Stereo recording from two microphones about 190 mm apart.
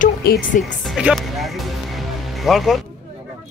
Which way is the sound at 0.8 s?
Centre (ahead or behind).